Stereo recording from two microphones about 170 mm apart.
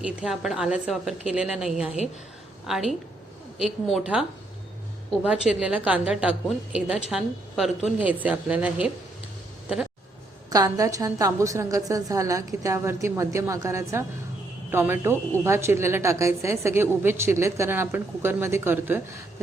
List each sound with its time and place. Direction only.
0.0 s a woman's voice: 5° right (ahead or behind)
10.5 s a woman's voice: 20° right (ahead or behind)